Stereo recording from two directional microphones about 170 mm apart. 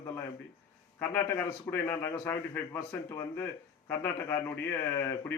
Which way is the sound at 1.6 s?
15° left (ahead or behind).